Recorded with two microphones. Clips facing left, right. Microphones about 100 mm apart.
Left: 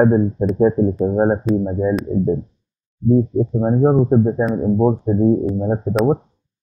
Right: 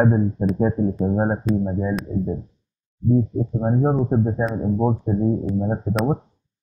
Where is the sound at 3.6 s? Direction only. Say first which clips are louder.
Left 5 dB; 5° left (ahead or behind).